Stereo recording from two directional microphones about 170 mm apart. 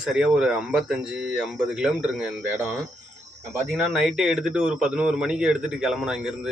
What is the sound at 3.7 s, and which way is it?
Speech, centre (ahead or behind).